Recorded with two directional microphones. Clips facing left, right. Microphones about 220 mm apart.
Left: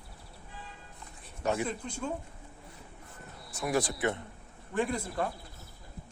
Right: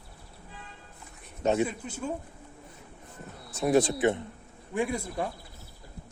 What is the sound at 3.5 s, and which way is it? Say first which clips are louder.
Speech: right 7 dB; 25° right (ahead or behind).